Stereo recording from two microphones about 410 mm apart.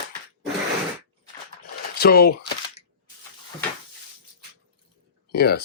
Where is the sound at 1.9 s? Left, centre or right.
Left.